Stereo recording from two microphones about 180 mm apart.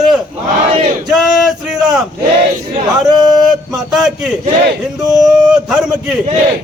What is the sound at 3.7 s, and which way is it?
A man's voice, centre (ahead or behind).